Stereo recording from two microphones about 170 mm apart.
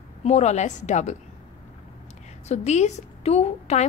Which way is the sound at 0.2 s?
40° left (ahead or behind).